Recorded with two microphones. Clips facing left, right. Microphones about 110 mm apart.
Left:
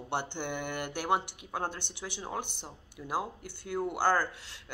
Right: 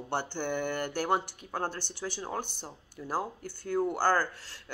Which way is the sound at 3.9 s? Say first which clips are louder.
Right 1 dB; 20° left (ahead or behind).